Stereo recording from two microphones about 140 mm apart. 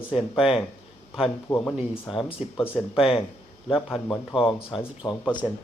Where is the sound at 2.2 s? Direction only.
15° left (ahead or behind).